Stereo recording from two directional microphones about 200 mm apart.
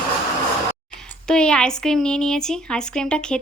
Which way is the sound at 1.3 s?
5° left (ahead or behind).